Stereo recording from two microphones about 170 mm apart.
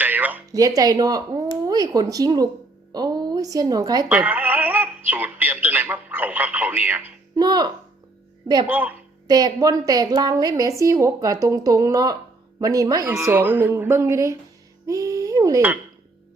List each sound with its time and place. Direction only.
0.0 s music: 10° right (ahead or behind)
0.5 s a woman's voice: 20° right (ahead or behind)
4.1 s music: 10° right (ahead or behind)
7.3 s a woman's voice: 25° right (ahead or behind)
8.6 s a woman's voice: 10° right (ahead or behind)
9.2 s a woman's voice: 20° right (ahead or behind)